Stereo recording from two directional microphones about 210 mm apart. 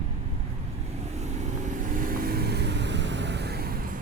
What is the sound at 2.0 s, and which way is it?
Vehicle, 45° right (ahead or behind).